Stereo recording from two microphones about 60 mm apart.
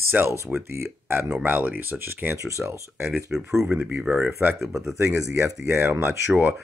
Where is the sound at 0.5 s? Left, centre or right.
Right.